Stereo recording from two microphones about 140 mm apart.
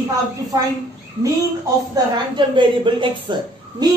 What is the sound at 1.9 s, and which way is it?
A woman's voice, 35° right (ahead or behind).